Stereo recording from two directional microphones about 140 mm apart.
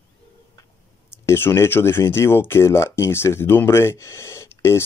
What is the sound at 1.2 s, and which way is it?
Speech, 20° left (ahead or behind).